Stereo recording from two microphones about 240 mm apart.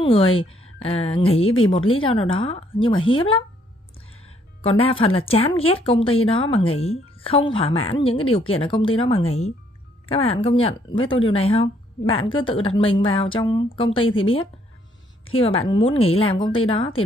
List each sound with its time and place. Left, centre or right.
0.0 s a woman's voice: left
4.6 s a woman's voice: left
15.2 s a woman's voice: left